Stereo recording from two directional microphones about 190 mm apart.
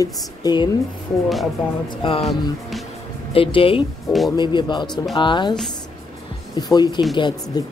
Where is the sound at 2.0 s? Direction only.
25° left (ahead or behind).